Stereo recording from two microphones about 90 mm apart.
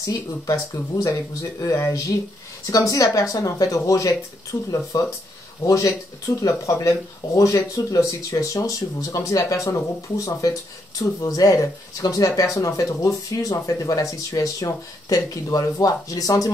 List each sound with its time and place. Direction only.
0.0 s speech: 35° left (ahead or behind)
11.0 s speech: 45° left (ahead or behind)